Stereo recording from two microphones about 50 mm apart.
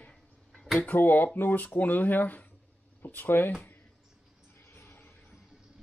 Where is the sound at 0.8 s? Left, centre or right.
Left.